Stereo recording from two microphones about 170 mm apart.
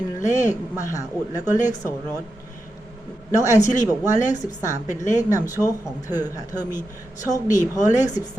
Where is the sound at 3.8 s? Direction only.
20° left (ahead or behind).